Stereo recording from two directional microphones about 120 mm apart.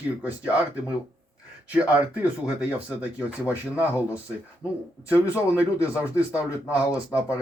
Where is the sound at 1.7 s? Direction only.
10° right (ahead or behind).